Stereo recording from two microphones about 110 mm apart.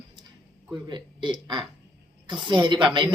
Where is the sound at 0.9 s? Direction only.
45° right (ahead or behind).